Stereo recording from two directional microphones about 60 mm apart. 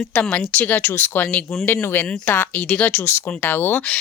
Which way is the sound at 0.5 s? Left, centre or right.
Left.